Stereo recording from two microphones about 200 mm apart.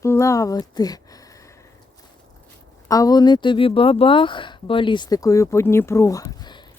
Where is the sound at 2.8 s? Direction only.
15° left (ahead or behind).